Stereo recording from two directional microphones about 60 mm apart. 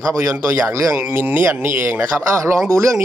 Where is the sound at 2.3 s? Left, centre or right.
Right.